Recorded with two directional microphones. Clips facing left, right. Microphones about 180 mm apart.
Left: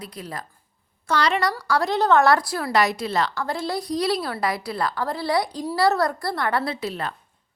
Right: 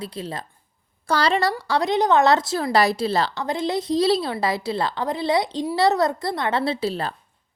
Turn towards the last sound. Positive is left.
turn(degrees=-30)  # may be behind; listen again after turning